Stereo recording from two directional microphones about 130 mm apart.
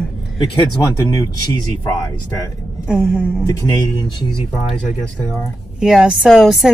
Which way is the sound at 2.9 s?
10° right (ahead or behind).